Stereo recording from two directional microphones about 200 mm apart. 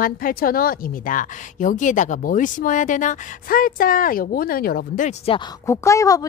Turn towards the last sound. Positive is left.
turn(degrees=15)  # may be behind; listen again after turning